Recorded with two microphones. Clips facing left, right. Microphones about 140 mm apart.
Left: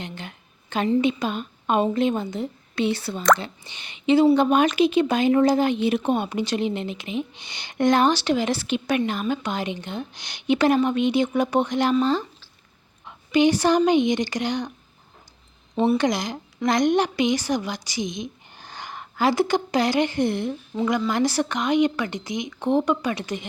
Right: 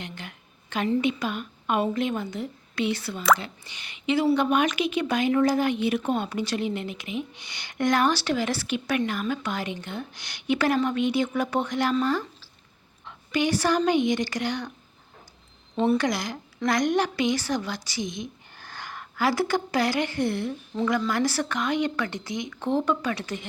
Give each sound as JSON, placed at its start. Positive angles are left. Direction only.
{"t": 0.0, "sound": "a woman's voice", "side_deg": 25}
{"t": 15.7, "sound": "a woman's voice", "side_deg": 15}